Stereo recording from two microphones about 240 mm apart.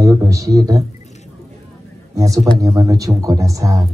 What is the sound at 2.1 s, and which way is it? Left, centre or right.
Speech, centre.